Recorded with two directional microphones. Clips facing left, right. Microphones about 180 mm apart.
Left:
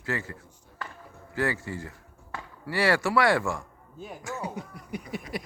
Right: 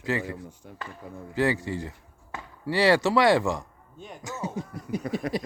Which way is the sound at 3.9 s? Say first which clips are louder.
Left 2 dB; 5° left (ahead or behind).